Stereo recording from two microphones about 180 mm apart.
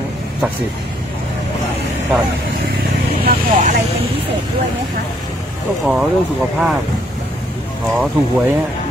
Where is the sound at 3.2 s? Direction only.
50° right (ahead or behind).